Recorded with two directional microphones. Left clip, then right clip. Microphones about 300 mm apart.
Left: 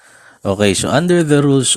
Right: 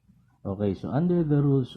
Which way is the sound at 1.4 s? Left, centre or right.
Left.